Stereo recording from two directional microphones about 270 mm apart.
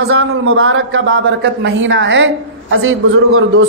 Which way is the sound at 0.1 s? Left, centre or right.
Right.